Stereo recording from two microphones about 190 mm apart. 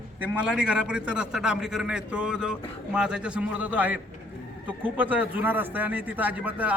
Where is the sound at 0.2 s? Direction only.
5° right (ahead or behind).